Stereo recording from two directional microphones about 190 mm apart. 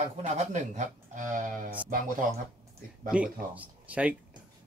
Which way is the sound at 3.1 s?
5° right (ahead or behind).